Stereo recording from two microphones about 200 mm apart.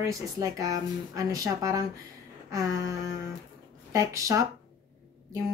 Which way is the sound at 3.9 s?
15° right (ahead or behind).